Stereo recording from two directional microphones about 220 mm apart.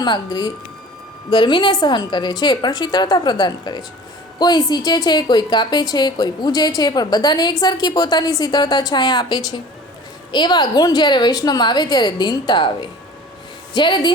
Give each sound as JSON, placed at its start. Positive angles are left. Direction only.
{"t": 0.0, "sound": "a woman's voice", "side_deg": 20}